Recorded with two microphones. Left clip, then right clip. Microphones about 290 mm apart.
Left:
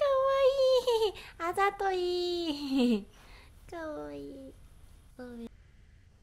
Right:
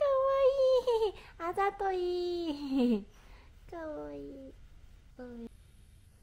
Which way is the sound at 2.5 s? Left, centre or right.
Left.